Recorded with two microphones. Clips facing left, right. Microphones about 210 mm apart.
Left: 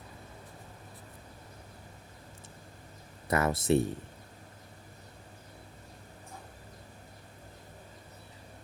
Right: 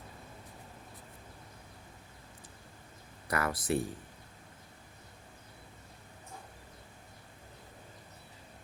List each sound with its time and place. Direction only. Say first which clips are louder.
3.2 s speech: left 5 dB; 25° left (ahead or behind)